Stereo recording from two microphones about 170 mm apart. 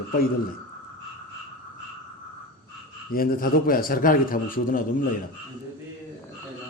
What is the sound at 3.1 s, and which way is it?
A man's voice, 60° left (ahead or behind).